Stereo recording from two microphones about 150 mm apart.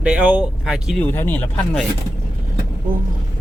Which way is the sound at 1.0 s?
15° left (ahead or behind).